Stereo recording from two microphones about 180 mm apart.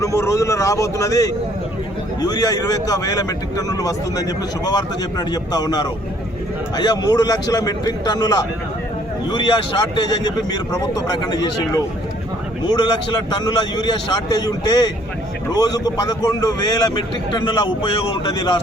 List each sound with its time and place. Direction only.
0.0 s a man's voice: 15° left (ahead or behind)
12.6 s a man's voice: 25° left (ahead or behind)